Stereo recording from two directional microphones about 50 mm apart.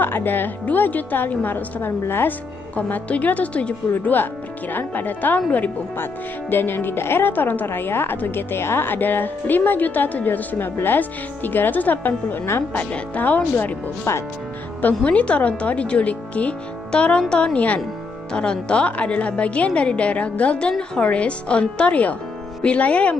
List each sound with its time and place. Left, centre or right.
0.0 s a woman's voice: left
2.7 s speech: left
4.1 s a woman's voice: left
6.5 s a woman's voice: left
14.1 s speech: left
15.0 s speech: left
17.6 s speech: left
18.3 s speech: centre